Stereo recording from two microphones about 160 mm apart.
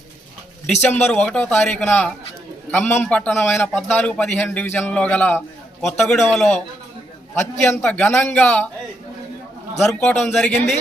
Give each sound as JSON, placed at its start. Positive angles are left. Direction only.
{"t": 0.8, "sound": "a man's voice", "side_deg": 10}
{"t": 7.6, "sound": "a man's voice", "side_deg": 10}
{"t": 10.0, "sound": "speech", "side_deg": 5}